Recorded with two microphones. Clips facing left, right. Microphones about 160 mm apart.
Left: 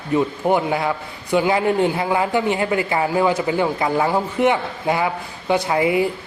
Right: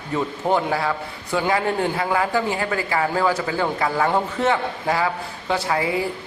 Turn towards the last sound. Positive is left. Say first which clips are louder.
# left 4 dB
turn(degrees=20)  # may be behind; listen again after turning